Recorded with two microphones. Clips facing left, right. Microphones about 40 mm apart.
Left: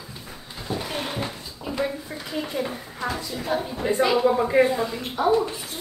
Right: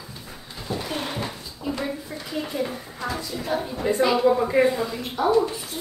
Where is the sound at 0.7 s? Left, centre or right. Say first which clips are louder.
Even; centre.